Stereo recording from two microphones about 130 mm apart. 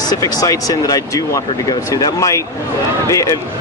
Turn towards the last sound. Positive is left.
turn(degrees=25)  # may be behind; listen again after turning